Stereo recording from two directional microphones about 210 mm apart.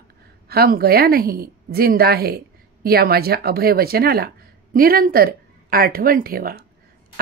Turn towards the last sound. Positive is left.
turn(degrees=-45)  # may be behind; listen again after turning